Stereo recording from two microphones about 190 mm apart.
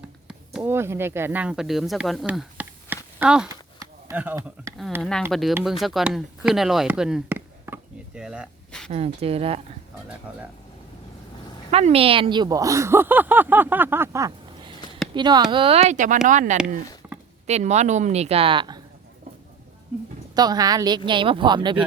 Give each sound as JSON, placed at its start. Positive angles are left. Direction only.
{"t": 0.3, "sound": "speech", "side_deg": -10}
{"t": 3.5, "sound": "a sound", "side_deg": -15}
{"t": 5.3, "sound": "speech", "side_deg": 0}
{"t": 8.9, "sound": "speech", "side_deg": -30}
{"t": 11.7, "sound": "speech", "side_deg": -35}
{"t": 20.3, "sound": "speech", "side_deg": -20}